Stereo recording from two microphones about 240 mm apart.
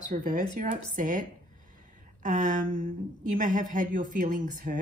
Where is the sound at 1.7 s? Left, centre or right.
Right.